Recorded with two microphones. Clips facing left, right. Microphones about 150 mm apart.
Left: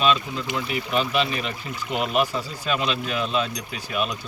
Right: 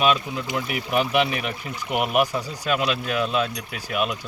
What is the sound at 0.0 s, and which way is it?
Speech, 10° right (ahead or behind).